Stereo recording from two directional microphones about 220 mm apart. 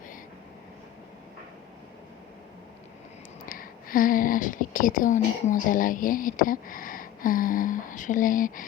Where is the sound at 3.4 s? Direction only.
40° left (ahead or behind).